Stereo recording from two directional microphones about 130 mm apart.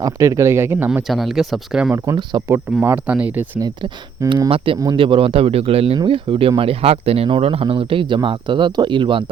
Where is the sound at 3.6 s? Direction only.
35° right (ahead or behind).